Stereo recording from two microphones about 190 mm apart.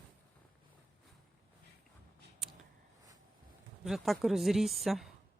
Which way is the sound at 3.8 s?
Centre (ahead or behind).